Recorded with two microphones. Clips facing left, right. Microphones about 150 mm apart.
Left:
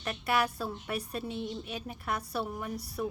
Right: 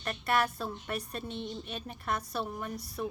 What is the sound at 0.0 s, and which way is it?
A woman's voice, 5° left (ahead or behind).